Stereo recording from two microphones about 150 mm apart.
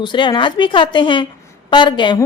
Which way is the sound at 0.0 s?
30° left (ahead or behind).